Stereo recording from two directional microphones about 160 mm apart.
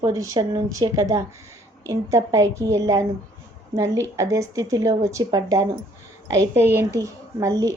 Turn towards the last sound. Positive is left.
turn(degrees=-20)  # may be behind; listen again after turning